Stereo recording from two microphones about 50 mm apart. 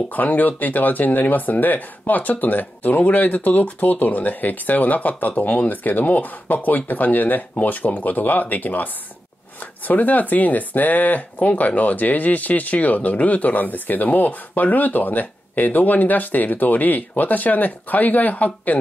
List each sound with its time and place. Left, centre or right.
0.1 s speech: left